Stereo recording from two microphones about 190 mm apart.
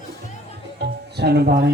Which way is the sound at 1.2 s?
60° right (ahead or behind).